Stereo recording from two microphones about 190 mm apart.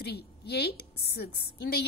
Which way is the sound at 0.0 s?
60° left (ahead or behind).